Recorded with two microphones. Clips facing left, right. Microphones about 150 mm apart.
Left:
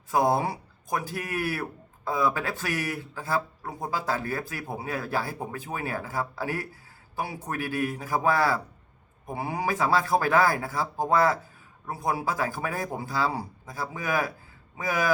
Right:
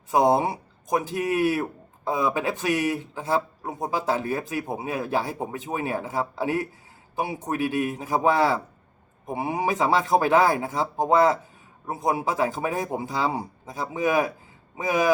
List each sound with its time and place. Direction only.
0.1 s speech: 20° right (ahead or behind)